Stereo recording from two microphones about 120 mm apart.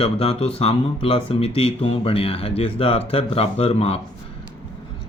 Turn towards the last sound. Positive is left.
turn(degrees=55)  # may be behind; listen again after turning